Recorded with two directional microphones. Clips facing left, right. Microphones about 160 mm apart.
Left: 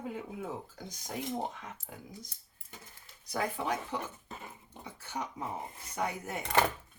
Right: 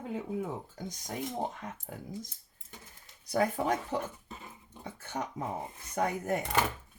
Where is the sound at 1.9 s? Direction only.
45° right (ahead or behind).